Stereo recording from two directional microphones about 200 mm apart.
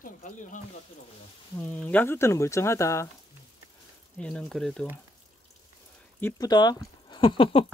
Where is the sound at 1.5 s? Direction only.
10° left (ahead or behind).